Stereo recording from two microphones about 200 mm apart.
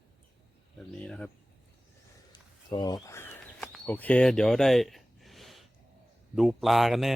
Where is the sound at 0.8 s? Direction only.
5° left (ahead or behind).